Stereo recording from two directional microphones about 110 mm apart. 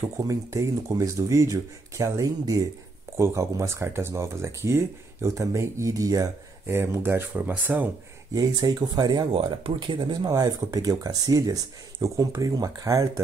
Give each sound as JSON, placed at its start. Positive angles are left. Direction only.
{"t": 0.0, "sound": "speech", "side_deg": -30}
{"t": 8.4, "sound": "speech", "side_deg": -35}
{"t": 9.3, "sound": "speech", "side_deg": -55}